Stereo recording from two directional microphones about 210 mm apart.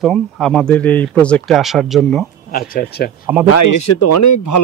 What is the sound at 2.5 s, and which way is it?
Speech, 45° left (ahead or behind).